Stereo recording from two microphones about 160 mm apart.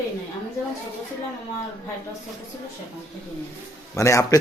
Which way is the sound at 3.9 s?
20° left (ahead or behind).